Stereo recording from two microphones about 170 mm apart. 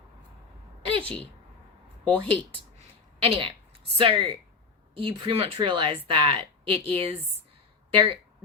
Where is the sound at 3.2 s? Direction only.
35° right (ahead or behind).